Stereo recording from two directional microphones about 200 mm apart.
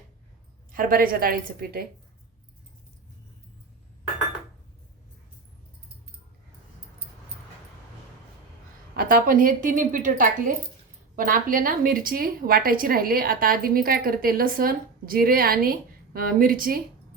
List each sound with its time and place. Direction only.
0.7 s a woman's voice: 45° right (ahead or behind)
9.0 s a woman's voice: 45° right (ahead or behind)